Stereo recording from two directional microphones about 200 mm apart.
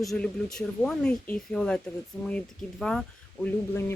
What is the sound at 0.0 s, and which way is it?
Speech, centre (ahead or behind).